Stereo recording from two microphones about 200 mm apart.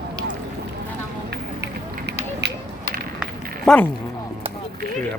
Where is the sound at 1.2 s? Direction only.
60° right (ahead or behind).